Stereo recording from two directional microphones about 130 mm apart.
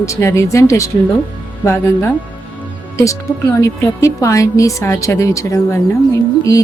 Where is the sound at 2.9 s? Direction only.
25° left (ahead or behind).